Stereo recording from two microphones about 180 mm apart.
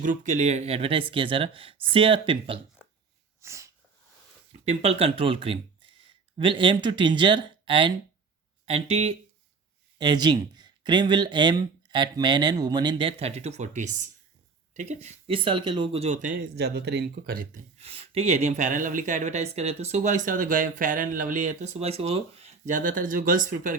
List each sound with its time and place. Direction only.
0.0 s speech: 45° right (ahead or behind); by 2.6 s 30° right (ahead or behind)
3.4 s sneeze: 15° right (ahead or behind)
4.6 s speech: 35° right (ahead or behind)
10.0 s speech: 25° right (ahead or behind); by 14.1 s 40° right (ahead or behind)
15.0 s speech: 30° right (ahead or behind); by 16.4 s 45° right (ahead or behind)
16.4 s speech: 60° right (ahead or behind)
17.8 s speech: 30° right (ahead or behind)